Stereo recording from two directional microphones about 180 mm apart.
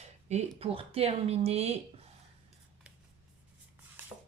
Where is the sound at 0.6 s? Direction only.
35° right (ahead or behind).